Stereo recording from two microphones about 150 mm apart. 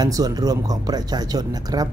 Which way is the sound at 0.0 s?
25° right (ahead or behind).